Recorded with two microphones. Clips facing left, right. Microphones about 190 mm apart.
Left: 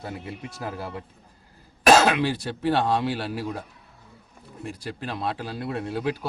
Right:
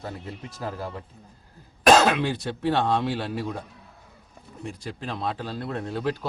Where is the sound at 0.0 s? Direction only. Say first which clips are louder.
Left 1 dB; 10° left (ahead or behind).